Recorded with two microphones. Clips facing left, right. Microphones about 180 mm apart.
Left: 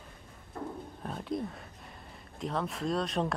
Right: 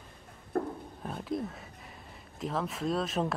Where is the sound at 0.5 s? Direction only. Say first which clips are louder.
Right 8 dB; 55° right (ahead or behind).